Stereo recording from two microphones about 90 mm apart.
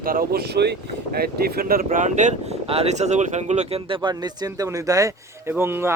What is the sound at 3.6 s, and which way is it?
Speech, 80° right.